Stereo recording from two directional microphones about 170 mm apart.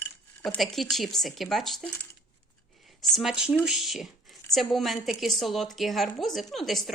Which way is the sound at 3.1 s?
Centre (ahead or behind).